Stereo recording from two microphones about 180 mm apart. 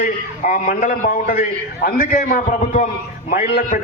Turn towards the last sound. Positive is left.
turn(degrees=50)  # may be behind; listen again after turning